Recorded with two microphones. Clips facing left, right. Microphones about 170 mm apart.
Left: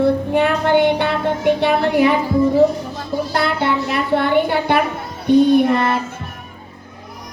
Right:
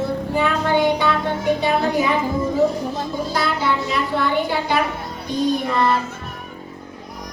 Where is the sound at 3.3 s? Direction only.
60° left (ahead or behind).